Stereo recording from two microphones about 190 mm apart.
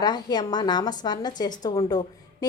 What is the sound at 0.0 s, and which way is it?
A woman's voice, 20° left (ahead or behind).